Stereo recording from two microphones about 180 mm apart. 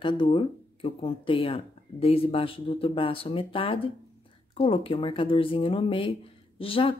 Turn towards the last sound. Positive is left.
turn(degrees=30)  # may be behind; listen again after turning